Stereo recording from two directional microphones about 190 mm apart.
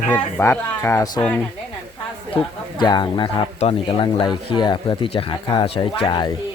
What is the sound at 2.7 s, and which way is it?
Speech, 25° left (ahead or behind).